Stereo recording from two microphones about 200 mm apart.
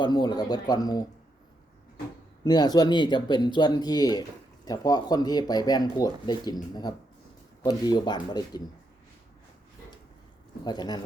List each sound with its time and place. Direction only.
0.0 s speech: 20° left (ahead or behind)
2.4 s speech: 20° left (ahead or behind)
10.6 s speech: 20° left (ahead or behind)